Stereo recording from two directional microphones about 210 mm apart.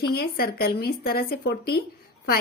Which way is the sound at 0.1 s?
45° left (ahead or behind).